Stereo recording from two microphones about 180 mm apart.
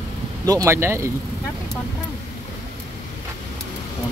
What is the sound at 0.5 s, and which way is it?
Speech, 15° right (ahead or behind).